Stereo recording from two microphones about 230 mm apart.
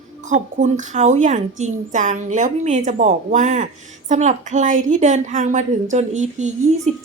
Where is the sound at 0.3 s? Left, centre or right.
Right.